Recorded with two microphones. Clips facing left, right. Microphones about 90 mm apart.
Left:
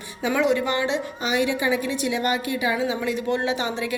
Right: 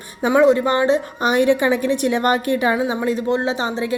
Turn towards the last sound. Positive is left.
turn(degrees=-30)  # may be behind; listen again after turning